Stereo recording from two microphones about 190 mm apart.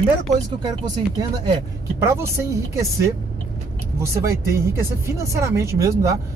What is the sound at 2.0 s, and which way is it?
Speech, 15° right (ahead or behind).